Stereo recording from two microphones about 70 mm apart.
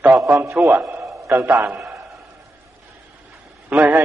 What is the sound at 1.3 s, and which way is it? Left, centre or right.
Music, right.